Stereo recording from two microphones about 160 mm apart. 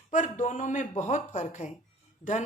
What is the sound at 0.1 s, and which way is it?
Speech, 50° left (ahead or behind).